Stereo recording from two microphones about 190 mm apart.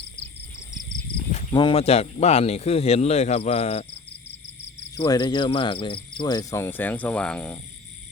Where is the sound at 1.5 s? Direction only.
30° left (ahead or behind).